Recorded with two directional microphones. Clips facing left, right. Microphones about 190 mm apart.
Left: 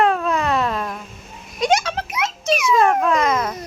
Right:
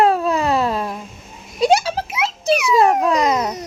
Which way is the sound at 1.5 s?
35° right (ahead or behind).